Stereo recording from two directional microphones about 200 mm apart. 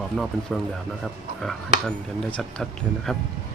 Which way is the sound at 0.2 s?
Centre (ahead or behind).